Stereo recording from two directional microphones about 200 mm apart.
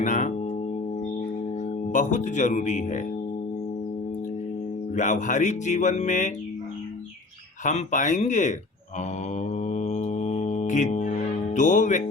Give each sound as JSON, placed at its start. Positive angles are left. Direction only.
{"t": 0.0, "sound": "speech", "side_deg": 35}
{"t": 1.9, "sound": "speech", "side_deg": 40}
{"t": 4.9, "sound": "speech", "side_deg": 40}
{"t": 7.6, "sound": "speech", "side_deg": 35}
{"t": 9.3, "sound": "mantra", "side_deg": 35}